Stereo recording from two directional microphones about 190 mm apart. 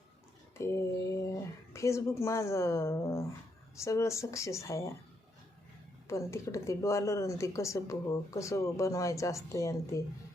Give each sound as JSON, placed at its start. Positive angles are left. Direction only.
{"t": 0.6, "sound": "speech", "side_deg": 15}
{"t": 6.1, "sound": "speech", "side_deg": 15}